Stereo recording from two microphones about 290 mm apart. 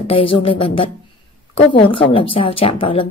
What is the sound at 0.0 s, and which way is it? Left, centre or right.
A woman's voice, centre.